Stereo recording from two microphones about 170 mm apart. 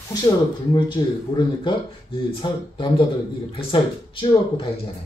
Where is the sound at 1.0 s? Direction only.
25° left (ahead or behind).